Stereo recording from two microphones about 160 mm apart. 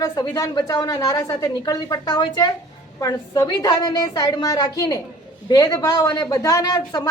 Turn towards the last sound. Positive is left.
turn(degrees=25)  # may be behind; listen again after turning